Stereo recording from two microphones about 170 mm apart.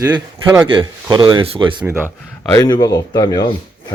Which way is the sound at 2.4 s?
15° left (ahead or behind).